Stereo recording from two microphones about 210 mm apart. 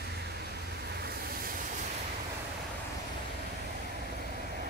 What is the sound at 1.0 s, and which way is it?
Vehicle, 45° right (ahead or behind).